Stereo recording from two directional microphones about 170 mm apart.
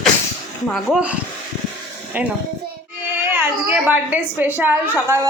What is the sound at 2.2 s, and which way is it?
Speech, 10° right (ahead or behind).